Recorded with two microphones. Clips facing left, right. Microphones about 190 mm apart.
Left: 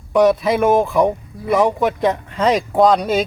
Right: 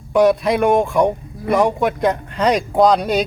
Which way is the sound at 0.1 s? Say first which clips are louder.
Even; centre (ahead or behind).